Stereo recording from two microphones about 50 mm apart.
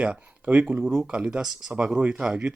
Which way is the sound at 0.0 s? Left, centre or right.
Right.